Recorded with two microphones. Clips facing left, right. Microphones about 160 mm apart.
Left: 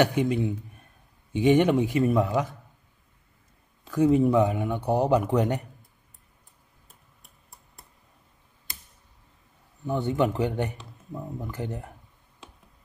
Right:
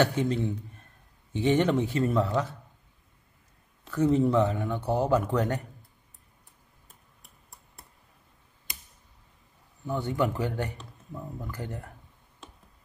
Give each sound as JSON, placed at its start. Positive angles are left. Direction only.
{"t": 0.0, "sound": "a man's voice", "side_deg": 15}
{"t": 3.9, "sound": "a man's voice", "side_deg": 10}
{"t": 6.9, "sound": "a sound", "side_deg": 0}
{"t": 9.8, "sound": "speech", "side_deg": 20}